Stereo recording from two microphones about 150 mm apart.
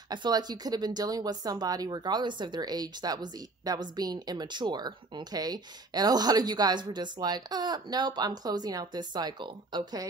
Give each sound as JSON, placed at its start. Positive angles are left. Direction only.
{"t": 0.1, "sound": "speech", "side_deg": -30}